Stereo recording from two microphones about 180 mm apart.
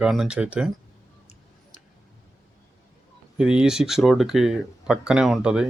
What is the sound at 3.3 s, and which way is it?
Speech, 5° right (ahead or behind).